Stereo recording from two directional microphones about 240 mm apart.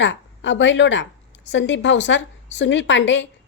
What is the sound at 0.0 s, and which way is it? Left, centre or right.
A woman's voice, left.